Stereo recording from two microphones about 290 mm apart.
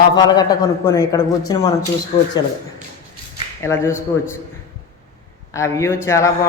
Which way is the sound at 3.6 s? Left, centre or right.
Centre.